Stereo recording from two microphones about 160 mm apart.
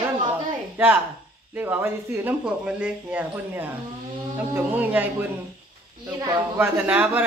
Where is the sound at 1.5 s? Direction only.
15° right (ahead or behind).